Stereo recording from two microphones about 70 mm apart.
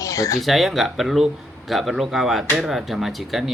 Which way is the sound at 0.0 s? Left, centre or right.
Left.